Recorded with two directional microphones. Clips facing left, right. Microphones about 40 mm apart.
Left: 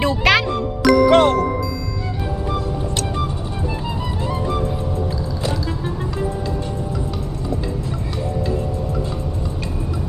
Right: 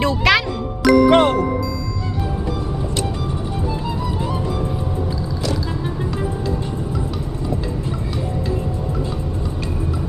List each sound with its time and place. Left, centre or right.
0.0 s music: centre
1.0 s music: right